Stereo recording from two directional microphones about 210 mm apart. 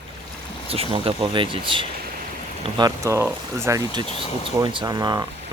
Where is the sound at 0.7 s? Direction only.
25° right (ahead or behind).